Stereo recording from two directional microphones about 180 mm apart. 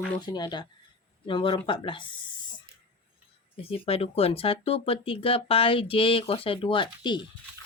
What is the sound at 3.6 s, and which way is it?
Speech, 30° left (ahead or behind).